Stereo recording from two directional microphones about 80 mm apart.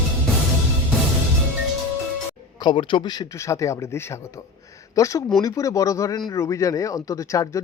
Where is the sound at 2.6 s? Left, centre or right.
Left.